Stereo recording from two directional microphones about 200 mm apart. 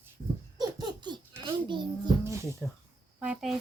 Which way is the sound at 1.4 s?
25° right (ahead or behind).